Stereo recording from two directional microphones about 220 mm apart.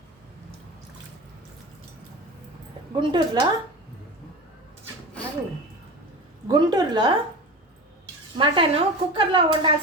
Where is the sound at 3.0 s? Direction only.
20° right (ahead or behind).